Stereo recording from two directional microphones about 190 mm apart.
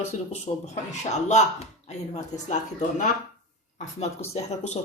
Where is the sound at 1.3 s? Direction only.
35° left (ahead or behind).